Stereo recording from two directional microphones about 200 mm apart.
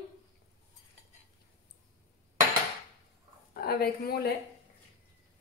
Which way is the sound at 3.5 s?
50° left (ahead or behind).